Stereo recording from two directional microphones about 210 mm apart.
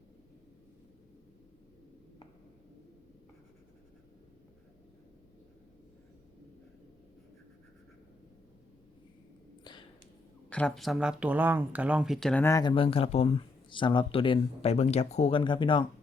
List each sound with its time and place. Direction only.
10.5 s speech: 5° left (ahead or behind); by 15.9 s 25° left (ahead or behind)